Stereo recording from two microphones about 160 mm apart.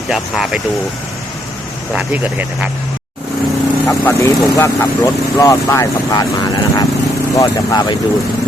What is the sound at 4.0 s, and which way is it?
Speech, 20° left (ahead or behind).